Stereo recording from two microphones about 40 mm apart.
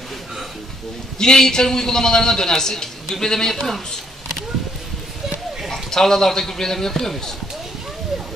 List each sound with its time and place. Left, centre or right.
1.1 s a man's voice: centre
5.7 s a man's voice: centre